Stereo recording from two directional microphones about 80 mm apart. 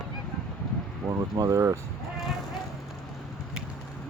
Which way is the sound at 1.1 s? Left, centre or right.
Right.